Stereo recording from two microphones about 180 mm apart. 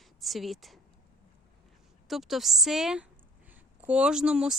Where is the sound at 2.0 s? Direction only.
Centre (ahead or behind).